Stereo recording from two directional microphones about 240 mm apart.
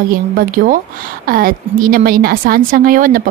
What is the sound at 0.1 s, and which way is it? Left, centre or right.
Speech, right.